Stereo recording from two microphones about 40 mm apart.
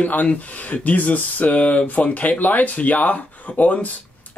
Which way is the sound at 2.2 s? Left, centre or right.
Left.